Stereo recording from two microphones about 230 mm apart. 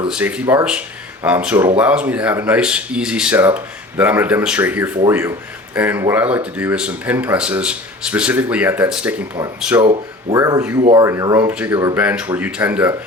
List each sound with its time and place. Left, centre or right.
0.1 s speech: centre
9.8 s speech: right; by 13.0 s centre